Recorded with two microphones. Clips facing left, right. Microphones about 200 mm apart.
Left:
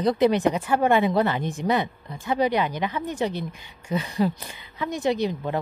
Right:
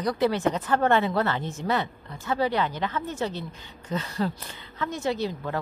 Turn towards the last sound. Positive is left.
turn(degrees=15)  # may be behind; listen again after turning